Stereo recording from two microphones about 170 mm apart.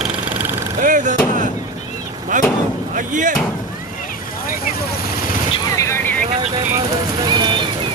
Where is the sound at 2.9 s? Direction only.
50° right (ahead or behind).